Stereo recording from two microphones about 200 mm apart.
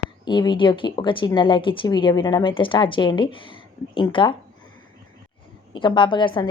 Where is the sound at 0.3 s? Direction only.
20° left (ahead or behind).